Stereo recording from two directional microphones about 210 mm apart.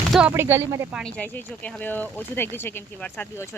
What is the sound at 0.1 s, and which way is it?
Speech, 5° right (ahead or behind).